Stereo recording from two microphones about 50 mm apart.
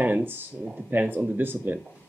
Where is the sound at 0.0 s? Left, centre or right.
Right.